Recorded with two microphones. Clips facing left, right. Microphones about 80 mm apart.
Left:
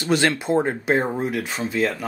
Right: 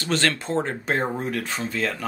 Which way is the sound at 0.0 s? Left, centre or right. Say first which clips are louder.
Left 4 dB; centre.